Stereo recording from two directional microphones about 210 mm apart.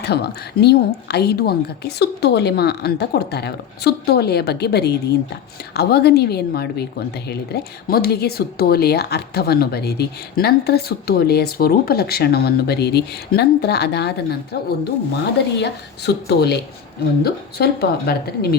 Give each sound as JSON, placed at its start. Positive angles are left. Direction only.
{"t": 0.0, "sound": "speech", "side_deg": 50}
{"t": 15.5, "sound": "speech", "side_deg": 55}